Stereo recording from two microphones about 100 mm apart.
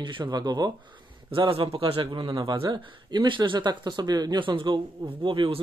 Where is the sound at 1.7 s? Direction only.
55° right (ahead or behind).